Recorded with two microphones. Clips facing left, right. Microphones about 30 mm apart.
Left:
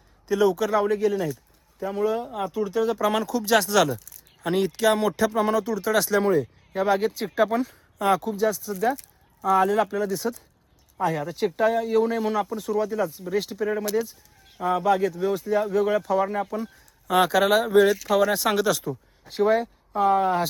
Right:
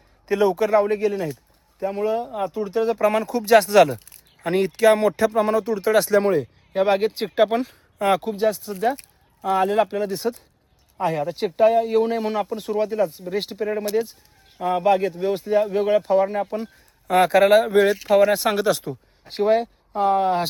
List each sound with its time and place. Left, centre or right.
0.3 s a man's voice: right
2.1 s speech: centre
2.6 s a man's voice: right
3.9 s a sound: right
4.4 s a man's voice: right
6.2 s speech: right
10.9 s a man's voice: right
16.5 s speech: right
17.2 s a man's voice: centre; by 20.5 s right